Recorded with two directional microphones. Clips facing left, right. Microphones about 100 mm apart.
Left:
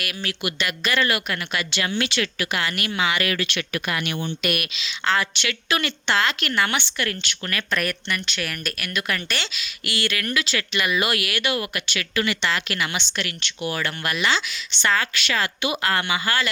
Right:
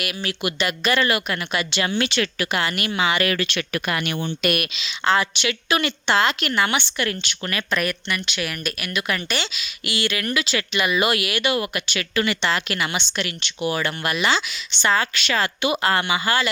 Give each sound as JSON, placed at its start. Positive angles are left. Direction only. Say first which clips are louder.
{"t": 0.0, "sound": "a woman's voice", "louder": "right 3 dB", "side_deg": -15}
{"t": 0.4, "sound": "speech", "louder": "right 4 dB", "side_deg": -25}
{"t": 4.8, "sound": "a woman's voice", "louder": "right 3 dB", "side_deg": -20}
{"t": 7.8, "sound": "speech", "louder": "right 2 dB", "side_deg": -5}